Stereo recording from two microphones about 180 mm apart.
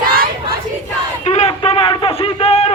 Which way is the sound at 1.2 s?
35° left (ahead or behind).